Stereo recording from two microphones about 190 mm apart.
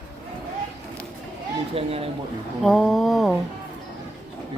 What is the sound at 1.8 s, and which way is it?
Speech, 30° right (ahead or behind).